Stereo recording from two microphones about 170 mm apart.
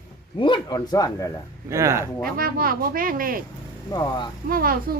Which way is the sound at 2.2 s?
60° right (ahead or behind).